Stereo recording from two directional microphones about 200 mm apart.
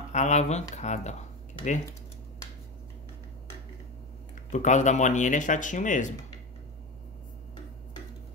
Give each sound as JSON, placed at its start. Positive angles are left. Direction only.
{"t": 0.1, "sound": "speech", "side_deg": 35}
{"t": 4.5, "sound": "speech", "side_deg": 35}